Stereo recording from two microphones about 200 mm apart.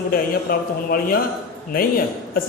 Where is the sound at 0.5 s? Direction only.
50° left (ahead or behind).